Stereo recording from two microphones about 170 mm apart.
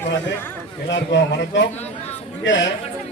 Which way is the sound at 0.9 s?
90° left.